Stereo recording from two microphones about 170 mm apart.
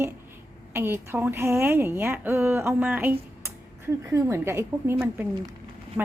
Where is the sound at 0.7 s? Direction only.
15° right (ahead or behind).